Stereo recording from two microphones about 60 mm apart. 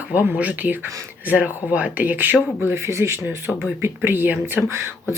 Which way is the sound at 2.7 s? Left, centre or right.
Right.